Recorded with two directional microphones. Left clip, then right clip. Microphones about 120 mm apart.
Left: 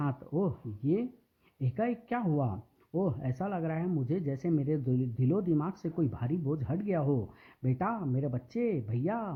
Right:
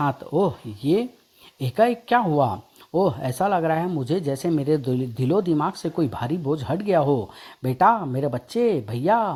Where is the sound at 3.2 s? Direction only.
35° right (ahead or behind).